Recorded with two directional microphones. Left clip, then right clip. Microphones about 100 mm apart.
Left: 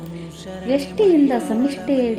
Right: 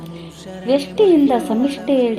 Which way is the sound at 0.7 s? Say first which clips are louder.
Right 3 dB; 35° right (ahead or behind).